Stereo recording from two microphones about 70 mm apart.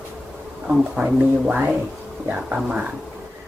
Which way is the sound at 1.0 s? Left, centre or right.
Right.